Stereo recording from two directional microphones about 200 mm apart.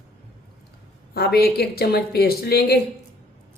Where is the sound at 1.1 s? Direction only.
50° left (ahead or behind).